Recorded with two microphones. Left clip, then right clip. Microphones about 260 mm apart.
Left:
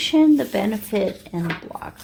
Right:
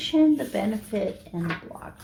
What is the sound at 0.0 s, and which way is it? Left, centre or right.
Speech, left.